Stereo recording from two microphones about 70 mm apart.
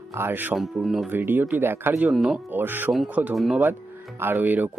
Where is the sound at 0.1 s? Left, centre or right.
Right.